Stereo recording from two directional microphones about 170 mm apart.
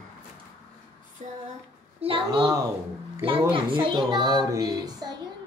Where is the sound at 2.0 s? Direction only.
30° right (ahead or behind).